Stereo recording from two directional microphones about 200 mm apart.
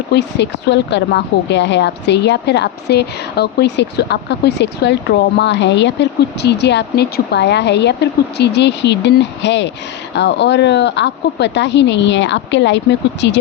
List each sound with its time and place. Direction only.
0.1 s a woman's voice: 60° left (ahead or behind)